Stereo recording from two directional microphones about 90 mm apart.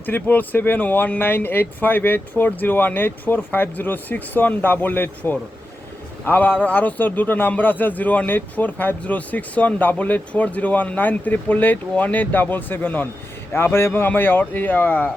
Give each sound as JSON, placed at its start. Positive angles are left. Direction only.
{"t": 0.0, "sound": "a man's voice", "side_deg": 20}